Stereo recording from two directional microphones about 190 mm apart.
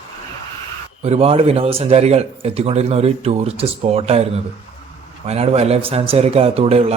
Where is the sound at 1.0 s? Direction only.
30° right (ahead or behind).